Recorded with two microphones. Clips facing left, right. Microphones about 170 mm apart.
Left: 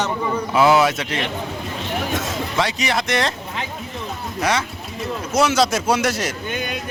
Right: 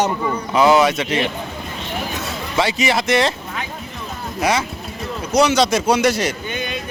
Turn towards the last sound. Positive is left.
turn(degrees=0)  # may be behind; listen again after turning